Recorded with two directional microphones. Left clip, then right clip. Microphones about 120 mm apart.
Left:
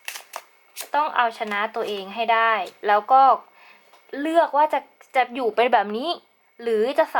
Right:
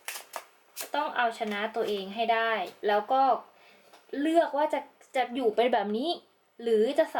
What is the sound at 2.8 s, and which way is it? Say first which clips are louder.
Speech: left 9 dB; 30° left (ahead or behind).